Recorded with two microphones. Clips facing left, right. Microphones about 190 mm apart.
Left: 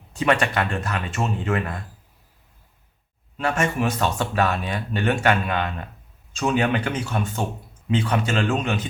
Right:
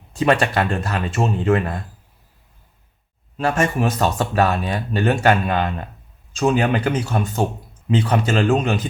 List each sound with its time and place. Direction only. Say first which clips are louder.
0.2 s speech: right 4 dB; 35° right (ahead or behind)
3.3 s speech: right 3 dB; 35° right (ahead or behind)